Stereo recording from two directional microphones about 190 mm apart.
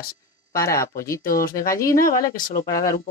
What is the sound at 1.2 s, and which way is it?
Speech, 50° left (ahead or behind).